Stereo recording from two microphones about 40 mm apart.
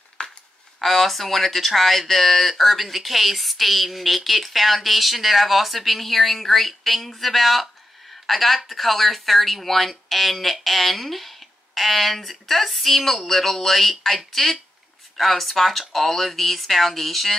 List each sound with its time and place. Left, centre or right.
0.2 s honk: left
0.7 s speech: centre